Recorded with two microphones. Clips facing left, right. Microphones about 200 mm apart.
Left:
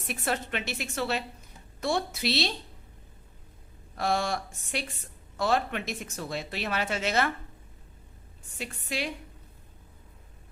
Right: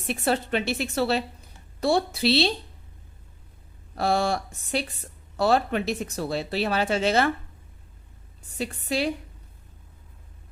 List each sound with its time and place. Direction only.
0.1 s speech: 30° right (ahead or behind)
3.9 s speech: 35° right (ahead or behind)
8.5 s speech: 35° right (ahead or behind)